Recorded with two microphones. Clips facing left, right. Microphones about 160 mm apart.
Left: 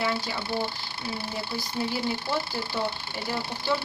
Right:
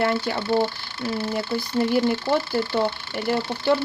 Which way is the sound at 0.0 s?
50° right (ahead or behind).